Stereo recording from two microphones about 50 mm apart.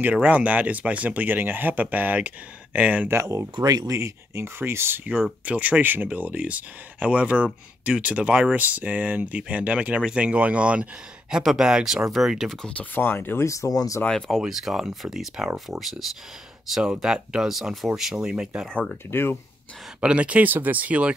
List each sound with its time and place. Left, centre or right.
0.0 s speech: right
3.1 s speech: right
3.9 s speech: right
4.6 s speech: right
5.4 s speech: right
5.8 s speech: right; by 12.4 s centre
12.9 s speech: left
13.4 s speech: left
14.0 s speech: centre
14.4 s speech: centre
18.1 s speech: centre
19.0 s speech: left
20.0 s speech: right